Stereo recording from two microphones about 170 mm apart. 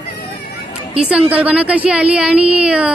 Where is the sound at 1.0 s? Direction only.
5° right (ahead or behind).